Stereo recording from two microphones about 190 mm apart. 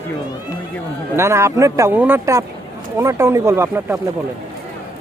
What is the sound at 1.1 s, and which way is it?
Speech, 15° right (ahead or behind).